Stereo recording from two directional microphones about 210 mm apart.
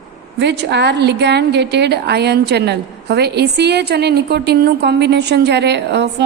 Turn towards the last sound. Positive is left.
turn(degrees=-55)  # may be behind; listen again after turning